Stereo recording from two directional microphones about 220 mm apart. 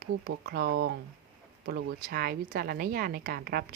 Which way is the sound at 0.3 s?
45° right (ahead or behind).